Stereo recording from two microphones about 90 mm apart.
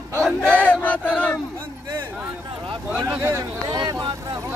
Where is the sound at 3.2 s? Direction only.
30° right (ahead or behind).